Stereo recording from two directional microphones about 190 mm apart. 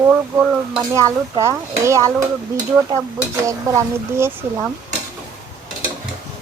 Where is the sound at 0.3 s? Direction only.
5° right (ahead or behind).